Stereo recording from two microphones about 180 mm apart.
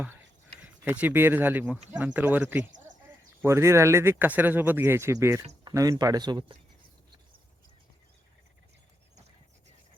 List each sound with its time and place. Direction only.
0.6 s speech: 10° right (ahead or behind)